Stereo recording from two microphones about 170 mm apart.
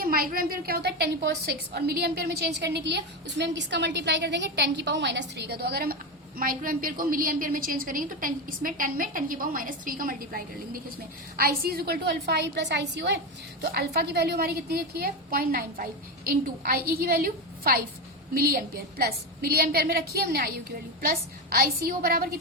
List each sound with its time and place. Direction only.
0.0 s a woman's voice: 60° right (ahead or behind); by 13.1 s 90° right
13.6 s a woman's voice: 75° right (ahead or behind)
21.5 s a woman's voice: 60° right (ahead or behind)